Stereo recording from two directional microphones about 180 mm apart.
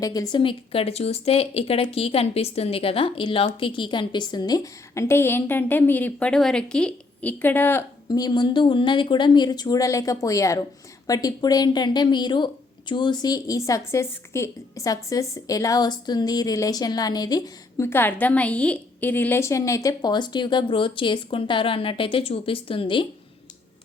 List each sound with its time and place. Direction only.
0.0 s speech: 20° left (ahead or behind)